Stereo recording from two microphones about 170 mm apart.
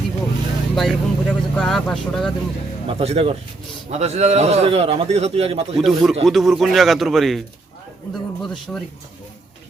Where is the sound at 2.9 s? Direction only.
35° right (ahead or behind).